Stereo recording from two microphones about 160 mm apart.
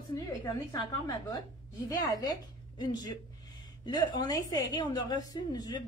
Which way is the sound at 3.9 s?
25° left (ahead or behind).